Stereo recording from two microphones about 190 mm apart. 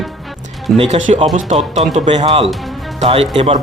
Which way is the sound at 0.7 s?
35° right (ahead or behind).